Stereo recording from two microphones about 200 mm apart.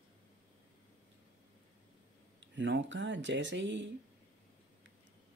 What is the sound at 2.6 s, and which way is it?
Speech, 65° right (ahead or behind).